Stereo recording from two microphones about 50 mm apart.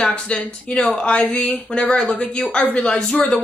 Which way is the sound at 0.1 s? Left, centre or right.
Left.